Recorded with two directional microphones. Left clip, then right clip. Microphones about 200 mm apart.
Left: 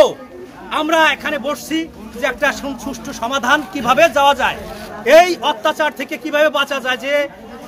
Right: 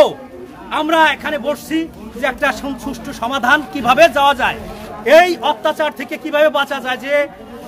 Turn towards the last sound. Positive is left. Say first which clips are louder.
# right 1 dB
turn(degrees=5)  # may be behind; listen again after turning